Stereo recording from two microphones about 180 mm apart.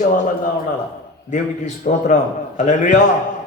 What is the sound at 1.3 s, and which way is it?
A man's voice, 45° left (ahead or behind).